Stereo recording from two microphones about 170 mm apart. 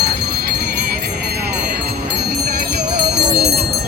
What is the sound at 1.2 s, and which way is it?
Jingle bell, 70° right (ahead or behind).